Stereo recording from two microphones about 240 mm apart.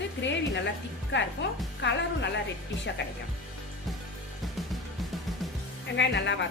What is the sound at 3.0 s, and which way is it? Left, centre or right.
Speech, left.